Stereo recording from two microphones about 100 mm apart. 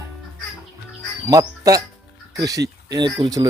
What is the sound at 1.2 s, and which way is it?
Speech, 35° right (ahead or behind).